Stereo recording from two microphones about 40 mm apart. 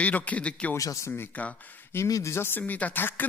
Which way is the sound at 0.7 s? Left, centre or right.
Left.